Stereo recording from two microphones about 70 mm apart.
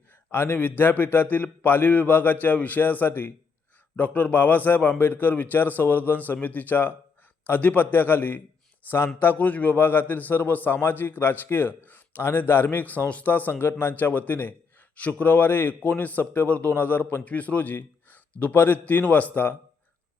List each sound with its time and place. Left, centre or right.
0.3 s a man's voice: left